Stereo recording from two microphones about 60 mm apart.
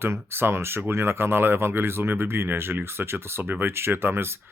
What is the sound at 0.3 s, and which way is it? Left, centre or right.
Speech, right.